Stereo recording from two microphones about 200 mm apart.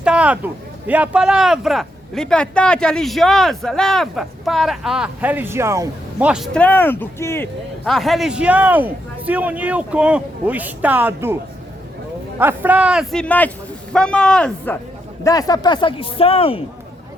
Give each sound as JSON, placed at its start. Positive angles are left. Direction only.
{"t": 0.0, "sound": "speech", "side_deg": -5}
{"t": 7.9, "sound": "a man's voice", "side_deg": 0}
{"t": 12.4, "sound": "speech", "side_deg": -10}
{"t": 15.2, "sound": "speech", "side_deg": 15}